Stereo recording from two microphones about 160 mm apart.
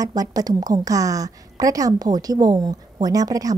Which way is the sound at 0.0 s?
20° right (ahead or behind).